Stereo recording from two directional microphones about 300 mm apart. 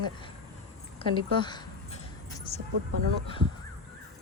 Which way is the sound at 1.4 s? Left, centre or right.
Centre.